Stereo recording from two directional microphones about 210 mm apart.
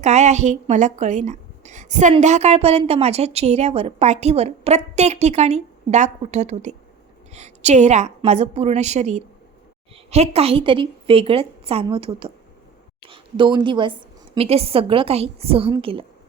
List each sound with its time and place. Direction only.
0.0 s a woman's voice: 30° right (ahead or behind)